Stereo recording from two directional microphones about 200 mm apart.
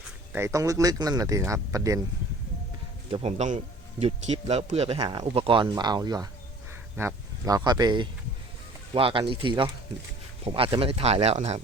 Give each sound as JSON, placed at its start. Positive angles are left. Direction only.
{"t": 0.3, "sound": "speech", "side_deg": -15}
{"t": 3.1, "sound": "speech", "side_deg": -35}